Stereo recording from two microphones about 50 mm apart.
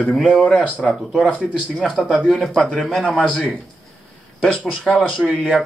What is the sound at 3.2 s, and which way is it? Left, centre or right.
Speech, left.